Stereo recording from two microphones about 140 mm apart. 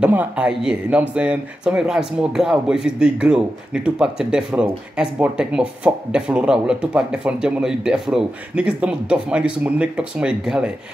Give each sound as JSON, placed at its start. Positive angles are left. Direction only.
{"t": 0.0, "sound": "speech", "side_deg": -10}